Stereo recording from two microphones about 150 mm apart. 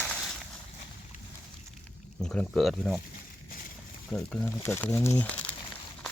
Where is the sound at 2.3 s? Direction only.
5° left (ahead or behind).